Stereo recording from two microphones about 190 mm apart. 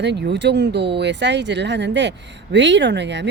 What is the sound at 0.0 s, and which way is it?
Speech, 65° right (ahead or behind).